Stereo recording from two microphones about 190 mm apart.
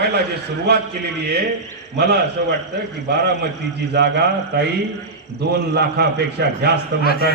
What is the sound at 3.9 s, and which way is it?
Speech, 60° right (ahead or behind).